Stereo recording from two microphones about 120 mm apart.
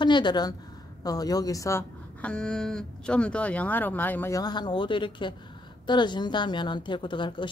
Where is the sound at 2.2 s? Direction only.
5° left (ahead or behind).